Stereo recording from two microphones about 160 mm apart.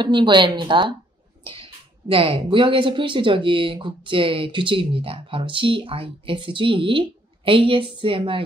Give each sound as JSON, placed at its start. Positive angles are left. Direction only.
{"t": 0.0, "sound": "a woman's voice", "side_deg": -30}